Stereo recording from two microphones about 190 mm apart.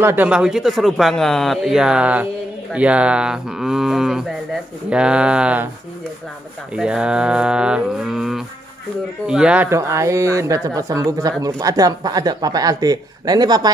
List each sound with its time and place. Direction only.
0.0 s speech: 10° right (ahead or behind)
6.7 s speech: 5° right (ahead or behind); by 13.7 s 20° right (ahead or behind)